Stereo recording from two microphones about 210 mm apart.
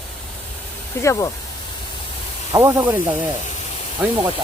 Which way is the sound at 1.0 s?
15° left (ahead or behind).